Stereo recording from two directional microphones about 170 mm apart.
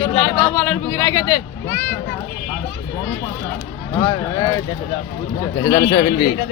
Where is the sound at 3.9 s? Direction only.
25° left (ahead or behind).